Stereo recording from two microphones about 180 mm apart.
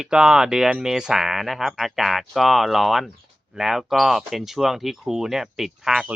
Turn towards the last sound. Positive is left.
turn(degrees=0)  # may be behind; listen again after turning